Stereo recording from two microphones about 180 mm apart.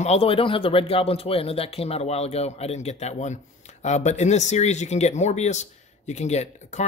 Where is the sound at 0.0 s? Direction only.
35° left (ahead or behind).